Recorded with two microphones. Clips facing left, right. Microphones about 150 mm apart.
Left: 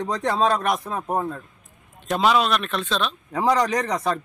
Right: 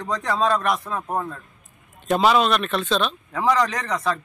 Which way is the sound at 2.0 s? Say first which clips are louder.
Right 2 dB; centre (ahead or behind).